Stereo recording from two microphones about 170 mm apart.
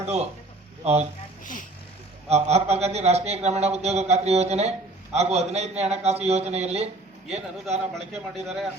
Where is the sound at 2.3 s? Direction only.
40° right (ahead or behind).